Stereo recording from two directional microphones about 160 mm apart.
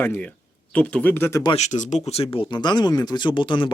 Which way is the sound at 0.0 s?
10° left (ahead or behind).